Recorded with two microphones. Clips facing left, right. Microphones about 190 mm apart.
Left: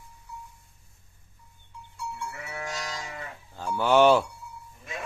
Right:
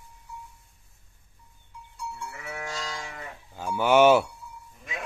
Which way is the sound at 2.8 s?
20° left (ahead or behind).